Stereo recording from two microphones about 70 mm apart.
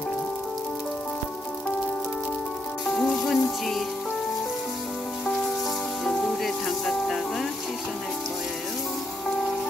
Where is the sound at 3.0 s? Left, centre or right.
Centre.